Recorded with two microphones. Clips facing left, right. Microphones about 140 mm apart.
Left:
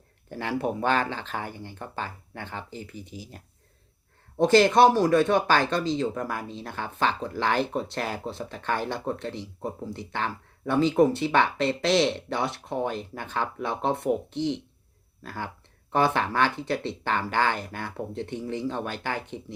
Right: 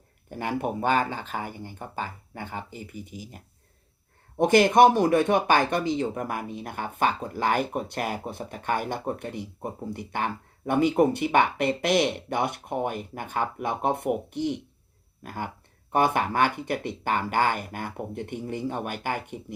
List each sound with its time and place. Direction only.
0.3 s speech: 15° right (ahead or behind)
4.4 s speech: 15° right (ahead or behind)